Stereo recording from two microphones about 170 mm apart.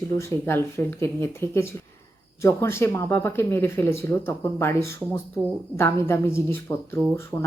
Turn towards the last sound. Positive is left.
turn(degrees=10)  # may be behind; listen again after turning